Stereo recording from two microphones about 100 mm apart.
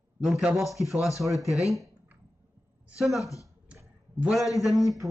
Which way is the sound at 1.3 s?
35° left (ahead or behind).